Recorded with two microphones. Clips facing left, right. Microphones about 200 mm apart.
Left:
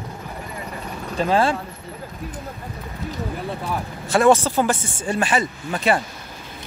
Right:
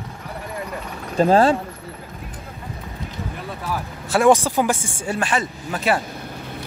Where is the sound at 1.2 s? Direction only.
40° right (ahead or behind).